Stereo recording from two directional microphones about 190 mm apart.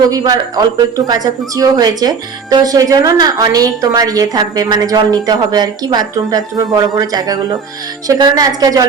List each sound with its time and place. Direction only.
0.1 s speech: 20° right (ahead or behind)